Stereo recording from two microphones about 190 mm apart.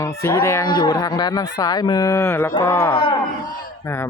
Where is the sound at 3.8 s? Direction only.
15° left (ahead or behind).